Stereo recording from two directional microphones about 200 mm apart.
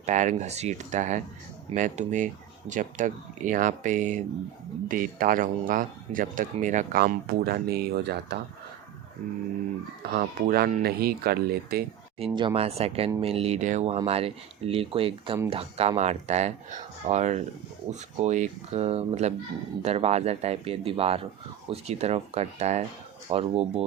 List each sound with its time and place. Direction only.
0.0 s speech: 40° right (ahead or behind); by 8.4 s 55° right (ahead or behind)
10.1 s speech: 45° right (ahead or behind)
12.2 s speech: 20° right (ahead or behind)